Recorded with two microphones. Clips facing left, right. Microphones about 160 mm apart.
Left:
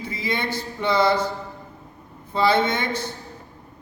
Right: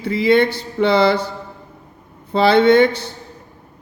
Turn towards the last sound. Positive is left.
turn(degrees=-70)  # may be behind; listen again after turning